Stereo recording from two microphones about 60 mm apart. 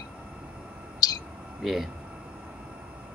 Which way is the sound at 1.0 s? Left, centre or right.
Left.